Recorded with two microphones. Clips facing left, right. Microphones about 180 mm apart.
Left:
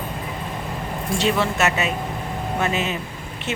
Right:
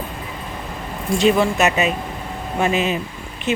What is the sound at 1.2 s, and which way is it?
Speech, 15° right (ahead or behind).